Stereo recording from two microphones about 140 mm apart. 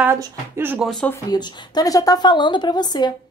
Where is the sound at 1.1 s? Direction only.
25° left (ahead or behind).